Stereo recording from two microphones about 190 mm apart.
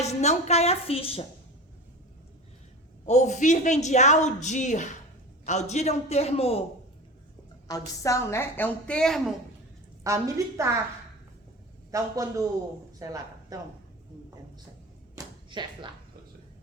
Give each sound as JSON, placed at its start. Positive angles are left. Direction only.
{"t": 0.0, "sound": "a woman's voice", "side_deg": 35}
{"t": 3.1, "sound": "a woman's voice", "side_deg": 40}
{"t": 7.7, "sound": "a woman's voice", "side_deg": 15}
{"t": 10.0, "sound": "a woman's voice", "side_deg": -15}
{"t": 11.9, "sound": "a man's voice", "side_deg": -15}
{"t": 15.1, "sound": "a sound", "side_deg": -25}